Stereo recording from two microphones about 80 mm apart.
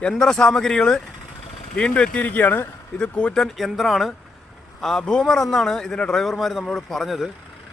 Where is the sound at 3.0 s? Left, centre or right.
Centre.